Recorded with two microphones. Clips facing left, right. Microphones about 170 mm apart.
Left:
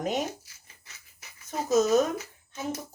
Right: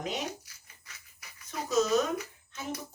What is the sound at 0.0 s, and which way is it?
Speech, 45° left (ahead or behind).